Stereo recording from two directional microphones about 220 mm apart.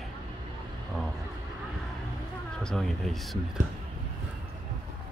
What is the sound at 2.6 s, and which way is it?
Speech, centre (ahead or behind).